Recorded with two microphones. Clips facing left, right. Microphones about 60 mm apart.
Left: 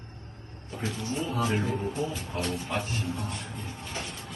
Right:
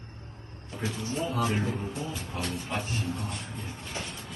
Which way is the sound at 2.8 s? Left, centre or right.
Right.